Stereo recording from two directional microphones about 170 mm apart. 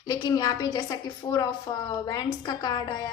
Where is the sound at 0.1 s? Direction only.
25° left (ahead or behind).